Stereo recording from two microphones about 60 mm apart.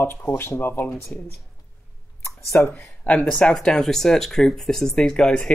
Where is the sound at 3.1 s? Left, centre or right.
Left.